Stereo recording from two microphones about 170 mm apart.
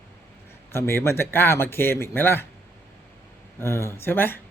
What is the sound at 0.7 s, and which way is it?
Speech, 15° left (ahead or behind).